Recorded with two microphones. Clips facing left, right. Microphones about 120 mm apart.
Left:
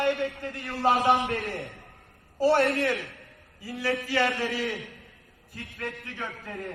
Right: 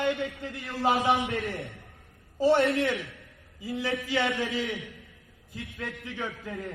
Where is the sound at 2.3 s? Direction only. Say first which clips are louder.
Even; 20° right (ahead or behind).